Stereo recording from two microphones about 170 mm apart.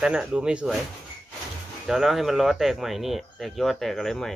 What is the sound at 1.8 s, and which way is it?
Speech, centre (ahead or behind).